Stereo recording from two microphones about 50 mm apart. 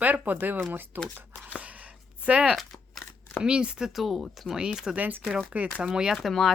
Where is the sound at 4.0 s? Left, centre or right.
Centre.